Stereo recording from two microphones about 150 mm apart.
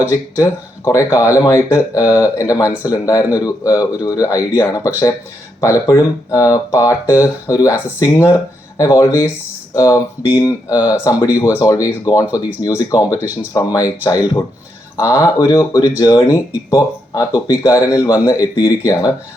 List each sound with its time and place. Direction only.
0.1 s speech: 20° left (ahead or behind)